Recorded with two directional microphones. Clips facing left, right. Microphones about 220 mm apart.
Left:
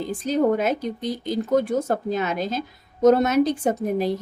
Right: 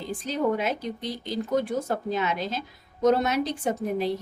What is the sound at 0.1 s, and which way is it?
A woman's voice, 45° left (ahead or behind).